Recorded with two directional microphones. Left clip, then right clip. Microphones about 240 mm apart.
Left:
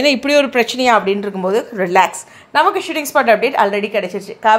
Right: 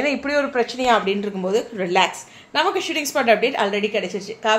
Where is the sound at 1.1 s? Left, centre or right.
Left.